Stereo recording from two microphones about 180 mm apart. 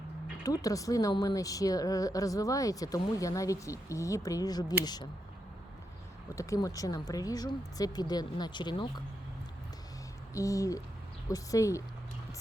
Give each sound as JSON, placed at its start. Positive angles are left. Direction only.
{"t": 0.4, "sound": "speech", "side_deg": 20}
{"t": 6.3, "sound": "speech", "side_deg": 15}
{"t": 10.3, "sound": "speech", "side_deg": 20}